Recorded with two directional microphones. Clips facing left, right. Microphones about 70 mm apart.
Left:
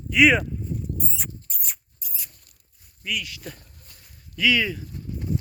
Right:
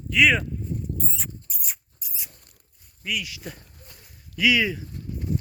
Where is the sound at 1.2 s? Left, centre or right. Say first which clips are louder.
Even; centre.